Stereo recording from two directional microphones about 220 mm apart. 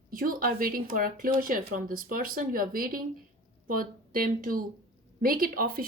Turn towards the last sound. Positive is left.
turn(degrees=-40)  # may be behind; listen again after turning